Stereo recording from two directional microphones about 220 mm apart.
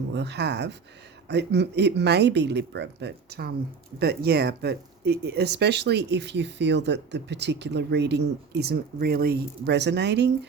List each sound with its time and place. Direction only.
0.1 s speech: 50° right (ahead or behind)